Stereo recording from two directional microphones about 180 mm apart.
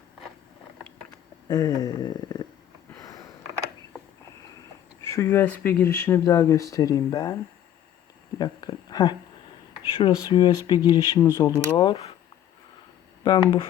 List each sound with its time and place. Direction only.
1.5 s a sound: 20° left (ahead or behind)
5.0 s speech: 15° left (ahead or behind)
8.4 s speech: 25° left (ahead or behind)
11.8 s speech: 30° left (ahead or behind)
13.2 s speech: 25° left (ahead or behind)